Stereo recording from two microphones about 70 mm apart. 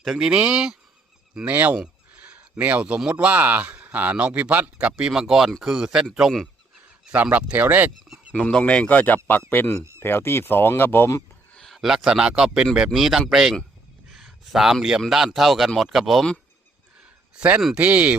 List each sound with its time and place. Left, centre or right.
0.0 s speech: centre
0.3 s speech: centre
1.5 s speech: right
1.8 s a sound: centre
3.1 s speech: centre
4.9 s speech: centre
7.0 s speech: right
8.3 s speech: centre; by 11.1 s left
11.5 s a sound: centre
12.7 s speech: centre
14.1 s a sound: centre
15.0 s speech: centre
17.7 s speech: centre